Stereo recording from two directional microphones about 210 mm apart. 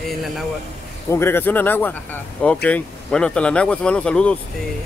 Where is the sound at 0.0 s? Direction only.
Centre (ahead or behind).